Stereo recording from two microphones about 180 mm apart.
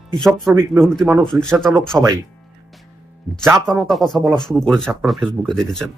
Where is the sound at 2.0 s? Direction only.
20° right (ahead or behind).